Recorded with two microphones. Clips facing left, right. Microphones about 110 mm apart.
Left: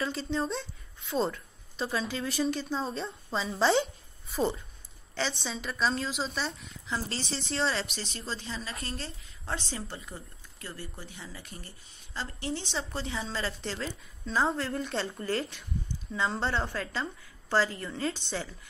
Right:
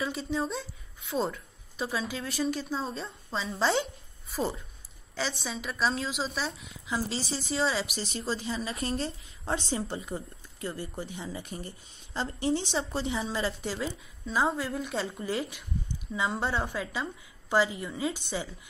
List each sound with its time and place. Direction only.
0.0 s a woman's voice: 5° right (ahead or behind)